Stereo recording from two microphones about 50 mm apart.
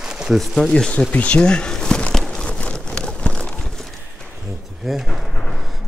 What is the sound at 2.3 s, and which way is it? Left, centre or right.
Crumpling, left.